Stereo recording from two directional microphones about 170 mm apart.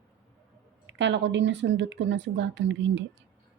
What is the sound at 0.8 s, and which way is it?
Speech, 90° right.